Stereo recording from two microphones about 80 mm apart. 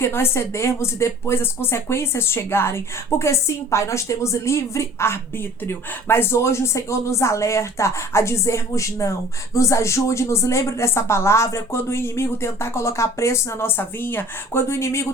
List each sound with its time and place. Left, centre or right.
0.0 s a woman's voice: left